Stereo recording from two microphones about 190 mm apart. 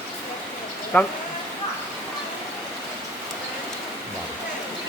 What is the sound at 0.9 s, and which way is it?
Speech, 10° left (ahead or behind).